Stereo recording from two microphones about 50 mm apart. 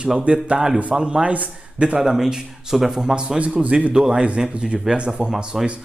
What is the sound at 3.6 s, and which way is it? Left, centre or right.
Speech, right.